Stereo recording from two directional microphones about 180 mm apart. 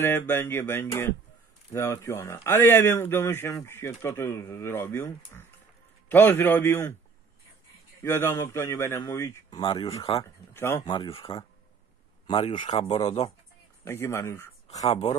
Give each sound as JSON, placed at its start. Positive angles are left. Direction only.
{"t": 0.3, "sound": "speech", "side_deg": 10}
{"t": 8.0, "sound": "speech", "side_deg": 15}
{"t": 9.6, "sound": "speech", "side_deg": 30}
{"t": 10.1, "sound": "speech", "side_deg": 15}
{"t": 10.9, "sound": "speech", "side_deg": 30}
{"t": 13.8, "sound": "speech", "side_deg": 15}
{"t": 14.7, "sound": "speech", "side_deg": 35}